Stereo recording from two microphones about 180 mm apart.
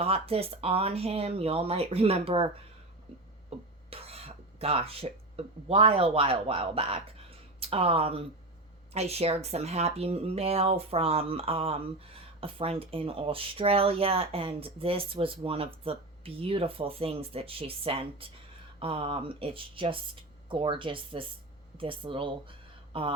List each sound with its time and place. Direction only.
0.0 s speech: 35° right (ahead or behind)
3.8 s speech: 35° right (ahead or behind)